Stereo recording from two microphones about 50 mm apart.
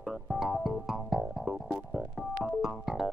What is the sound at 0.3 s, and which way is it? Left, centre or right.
Music, centre.